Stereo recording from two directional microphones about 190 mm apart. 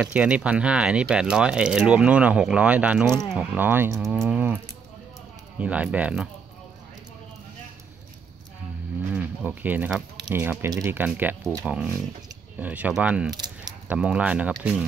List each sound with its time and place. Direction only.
0.0 s speech: 5° right (ahead or behind)
3.9 s speech: centre (ahead or behind)
5.6 s speech: 5° right (ahead or behind)
9.1 s speech: 5° right (ahead or behind)
13.3 s squish: 20° right (ahead or behind)
13.8 s speech: 5° right (ahead or behind)